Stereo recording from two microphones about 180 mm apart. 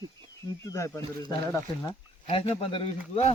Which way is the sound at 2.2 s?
35° left (ahead or behind).